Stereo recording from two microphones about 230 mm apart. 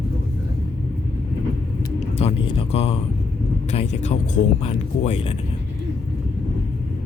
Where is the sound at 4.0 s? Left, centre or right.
Left.